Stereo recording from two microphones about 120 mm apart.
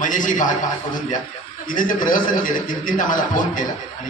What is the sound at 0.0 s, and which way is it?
Speech, 90° left.